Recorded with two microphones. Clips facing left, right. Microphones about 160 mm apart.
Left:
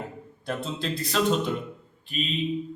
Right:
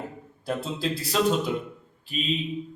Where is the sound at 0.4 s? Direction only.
5° right (ahead or behind).